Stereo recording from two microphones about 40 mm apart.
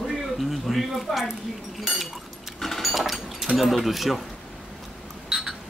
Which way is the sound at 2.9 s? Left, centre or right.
Centre.